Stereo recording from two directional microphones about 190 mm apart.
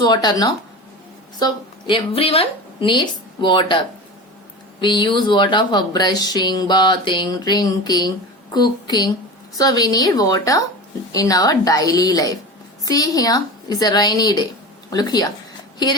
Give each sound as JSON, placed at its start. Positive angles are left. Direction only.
{"t": 0.0, "sound": "speech", "side_deg": 20}
{"t": 4.8, "sound": "speech", "side_deg": 25}